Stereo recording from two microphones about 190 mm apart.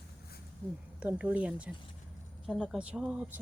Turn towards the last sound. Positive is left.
turn(degrees=-5)  # may be behind; listen again after turning